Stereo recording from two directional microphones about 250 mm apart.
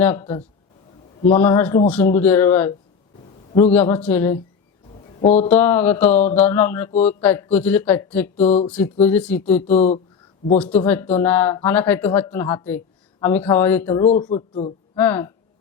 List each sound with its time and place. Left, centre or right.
0.0 s speech: centre
5.4 s speech: centre
9.7 s speech: left
10.6 s speech: centre
13.8 s speech: left
14.9 s speech: centre